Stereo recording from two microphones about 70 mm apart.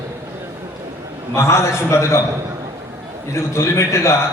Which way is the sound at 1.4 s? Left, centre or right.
Left.